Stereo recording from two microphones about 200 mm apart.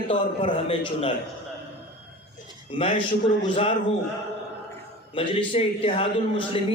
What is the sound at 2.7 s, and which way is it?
A man's voice, 25° left (ahead or behind).